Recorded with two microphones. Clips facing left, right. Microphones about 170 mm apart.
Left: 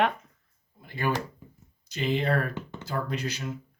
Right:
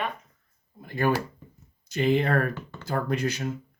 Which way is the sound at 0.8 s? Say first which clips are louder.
Right 4 dB; 50° right (ahead or behind).